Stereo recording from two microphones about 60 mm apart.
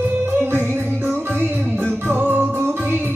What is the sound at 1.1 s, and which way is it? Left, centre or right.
Music, right.